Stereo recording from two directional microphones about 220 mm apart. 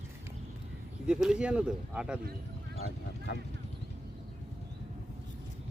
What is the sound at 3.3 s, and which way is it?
Speech, 50° left (ahead or behind).